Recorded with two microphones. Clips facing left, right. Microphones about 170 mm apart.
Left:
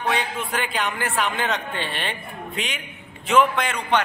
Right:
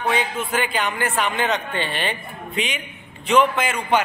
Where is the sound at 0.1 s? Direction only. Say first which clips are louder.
Right 3 dB; centre (ahead or behind).